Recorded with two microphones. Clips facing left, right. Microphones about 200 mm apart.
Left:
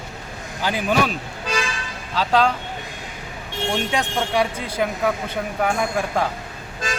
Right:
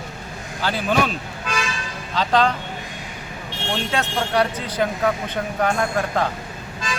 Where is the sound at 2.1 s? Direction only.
5° left (ahead or behind).